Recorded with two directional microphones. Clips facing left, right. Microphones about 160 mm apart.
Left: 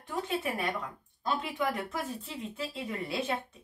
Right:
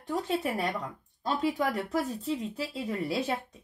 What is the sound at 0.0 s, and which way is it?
Speech, 35° right (ahead or behind).